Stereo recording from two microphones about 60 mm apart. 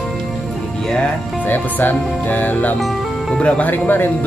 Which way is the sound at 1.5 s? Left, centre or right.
Left.